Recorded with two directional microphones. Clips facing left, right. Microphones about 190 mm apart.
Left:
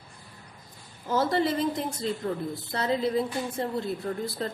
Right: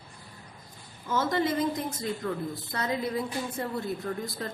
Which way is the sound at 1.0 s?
35° left (ahead or behind).